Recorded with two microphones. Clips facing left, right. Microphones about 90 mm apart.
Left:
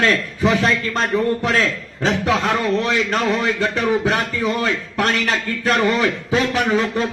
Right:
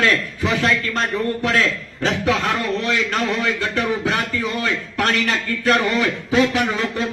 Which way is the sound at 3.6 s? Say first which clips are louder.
Left 3 dB; 30° left (ahead or behind).